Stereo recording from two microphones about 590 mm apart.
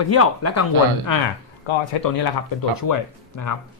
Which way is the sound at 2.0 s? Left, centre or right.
Left.